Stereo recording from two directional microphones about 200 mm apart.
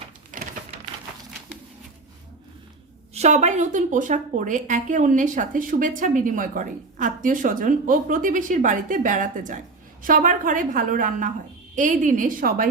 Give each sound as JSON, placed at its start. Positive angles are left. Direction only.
{"t": 0.3, "sound": "typewriter", "side_deg": -40}
{"t": 3.2, "sound": "a woman's voice", "side_deg": -35}